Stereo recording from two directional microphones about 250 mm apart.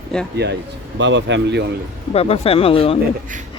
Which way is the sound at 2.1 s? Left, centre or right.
Left.